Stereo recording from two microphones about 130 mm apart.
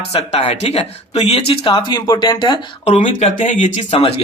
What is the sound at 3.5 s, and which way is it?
Speech, 70° left (ahead or behind).